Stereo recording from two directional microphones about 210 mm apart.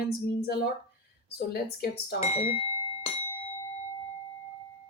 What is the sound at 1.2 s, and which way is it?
Speech, 50° left (ahead or behind).